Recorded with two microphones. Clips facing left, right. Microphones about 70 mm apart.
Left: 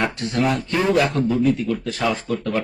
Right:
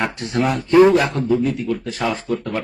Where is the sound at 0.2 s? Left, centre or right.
Right.